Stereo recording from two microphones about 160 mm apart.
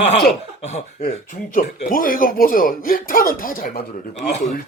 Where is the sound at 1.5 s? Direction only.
60° left (ahead or behind).